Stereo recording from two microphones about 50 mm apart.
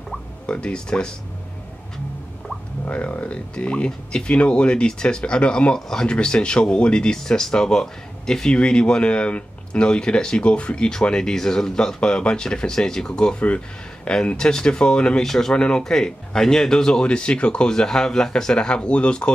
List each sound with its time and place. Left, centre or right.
0.5 s speech: centre
2.9 s speech: left; by 15.5 s centre
15.5 s speech: centre